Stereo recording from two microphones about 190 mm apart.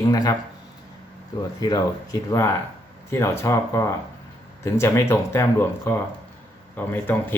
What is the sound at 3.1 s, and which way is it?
Speech, 15° left (ahead or behind).